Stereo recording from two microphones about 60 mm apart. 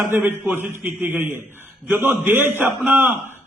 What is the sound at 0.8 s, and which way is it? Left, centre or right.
Speech, right.